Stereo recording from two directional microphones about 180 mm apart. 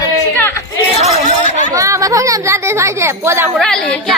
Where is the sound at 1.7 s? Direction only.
15° right (ahead or behind).